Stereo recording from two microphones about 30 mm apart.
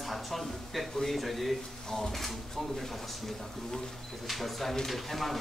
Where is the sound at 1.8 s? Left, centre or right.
Centre.